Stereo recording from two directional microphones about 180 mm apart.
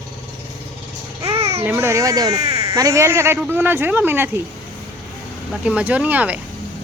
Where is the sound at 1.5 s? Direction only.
10° right (ahead or behind).